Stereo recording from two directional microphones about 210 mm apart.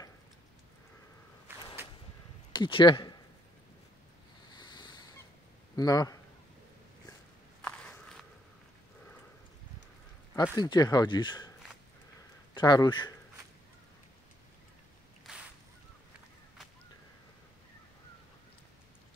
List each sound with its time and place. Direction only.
1.5 s whip: 10° right (ahead or behind)
2.5 s speech: 20° left (ahead or behind)
4.5 s boat: 20° left (ahead or behind)
5.8 s a man's voice: 15° left (ahead or behind)
7.6 s biting: 5° left (ahead or behind)
10.3 s speech: 15° left (ahead or behind)
12.5 s speech: 20° left (ahead or behind)